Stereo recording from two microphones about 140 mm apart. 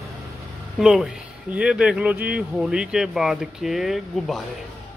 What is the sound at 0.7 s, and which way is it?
Speech, 5° right (ahead or behind).